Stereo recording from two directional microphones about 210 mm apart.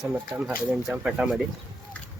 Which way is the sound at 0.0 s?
5° right (ahead or behind).